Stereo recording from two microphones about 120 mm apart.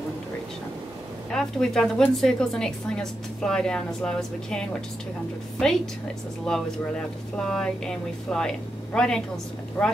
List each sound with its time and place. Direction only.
1.3 s a woman's voice: 5° left (ahead or behind)